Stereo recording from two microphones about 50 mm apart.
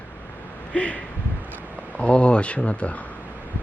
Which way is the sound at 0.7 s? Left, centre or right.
Left.